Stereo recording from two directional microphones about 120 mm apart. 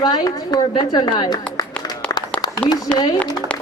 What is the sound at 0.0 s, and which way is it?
A man's voice, 35° left (ahead or behind).